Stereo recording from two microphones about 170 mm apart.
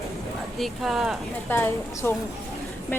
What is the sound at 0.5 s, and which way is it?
Speech, centre (ahead or behind).